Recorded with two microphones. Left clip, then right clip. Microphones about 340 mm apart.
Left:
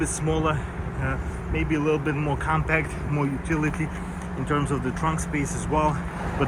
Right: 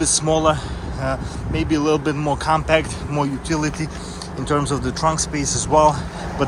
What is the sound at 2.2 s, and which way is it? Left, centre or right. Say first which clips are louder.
Speech: right 7 dB; centre.